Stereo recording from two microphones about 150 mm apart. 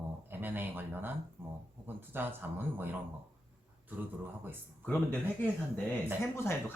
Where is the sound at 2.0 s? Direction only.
15° right (ahead or behind).